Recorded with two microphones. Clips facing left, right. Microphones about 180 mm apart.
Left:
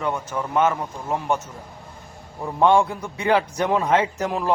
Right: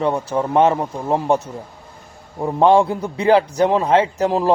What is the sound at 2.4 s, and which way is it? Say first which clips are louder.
A man's voice: right 4 dB; 25° right (ahead or behind).